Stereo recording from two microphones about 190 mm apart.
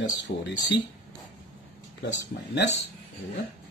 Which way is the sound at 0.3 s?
55° left (ahead or behind).